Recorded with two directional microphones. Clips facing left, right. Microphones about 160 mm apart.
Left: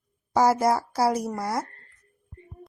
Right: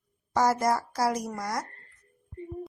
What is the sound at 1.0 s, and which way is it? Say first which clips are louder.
Speech: left 5 dB; 30° left (ahead or behind).